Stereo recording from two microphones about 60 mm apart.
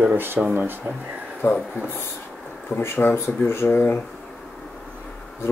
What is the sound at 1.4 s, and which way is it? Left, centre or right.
Speech, left.